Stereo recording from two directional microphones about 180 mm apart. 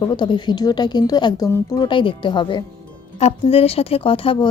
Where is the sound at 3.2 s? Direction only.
35° left (ahead or behind).